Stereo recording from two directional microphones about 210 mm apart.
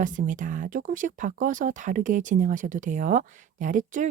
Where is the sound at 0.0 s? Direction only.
40° right (ahead or behind).